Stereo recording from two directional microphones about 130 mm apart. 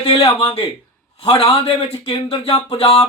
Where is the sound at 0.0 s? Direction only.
50° left (ahead or behind).